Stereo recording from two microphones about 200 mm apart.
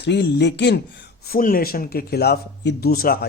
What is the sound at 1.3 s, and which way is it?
Speech, 45° left (ahead or behind).